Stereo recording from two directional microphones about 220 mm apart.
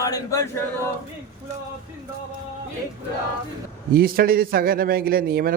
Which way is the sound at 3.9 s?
40° right (ahead or behind).